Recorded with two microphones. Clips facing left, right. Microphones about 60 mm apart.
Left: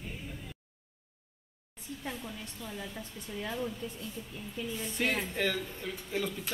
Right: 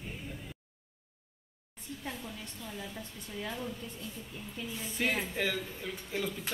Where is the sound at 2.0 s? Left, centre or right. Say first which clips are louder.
Left 1 dB; centre.